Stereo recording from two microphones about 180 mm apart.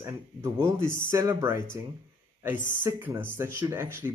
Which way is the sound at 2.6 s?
10° right (ahead or behind).